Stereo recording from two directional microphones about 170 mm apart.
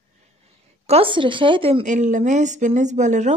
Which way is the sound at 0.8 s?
35° right (ahead or behind).